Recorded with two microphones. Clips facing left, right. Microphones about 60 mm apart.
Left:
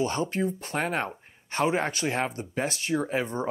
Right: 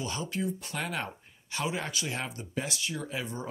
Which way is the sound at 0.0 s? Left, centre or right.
Left.